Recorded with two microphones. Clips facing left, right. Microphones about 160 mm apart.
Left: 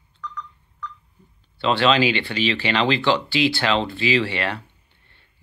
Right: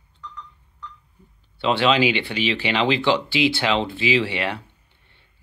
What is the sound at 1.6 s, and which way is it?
Speech, 15° right (ahead or behind).